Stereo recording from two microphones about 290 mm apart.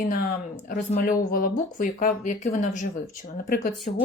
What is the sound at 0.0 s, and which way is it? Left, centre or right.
Speech, left.